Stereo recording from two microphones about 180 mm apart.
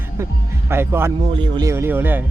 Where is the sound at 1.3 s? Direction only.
25° right (ahead or behind).